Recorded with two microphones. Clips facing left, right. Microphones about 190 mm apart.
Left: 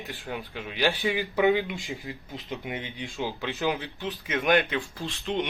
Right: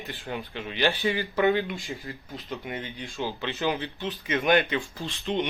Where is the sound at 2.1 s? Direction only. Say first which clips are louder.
Even; 15° left (ahead or behind).